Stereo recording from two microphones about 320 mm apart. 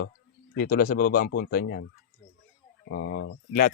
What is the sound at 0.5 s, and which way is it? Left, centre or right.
Speech, left.